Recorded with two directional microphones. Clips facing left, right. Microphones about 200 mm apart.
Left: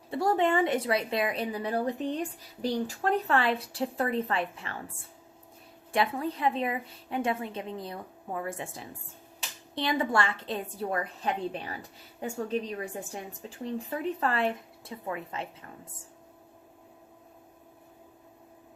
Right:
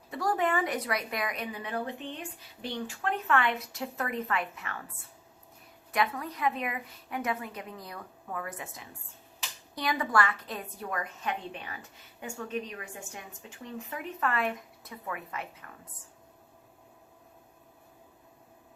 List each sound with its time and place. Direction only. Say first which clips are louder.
0.1 s a woman's voice: left 4 dB; 25° left (ahead or behind)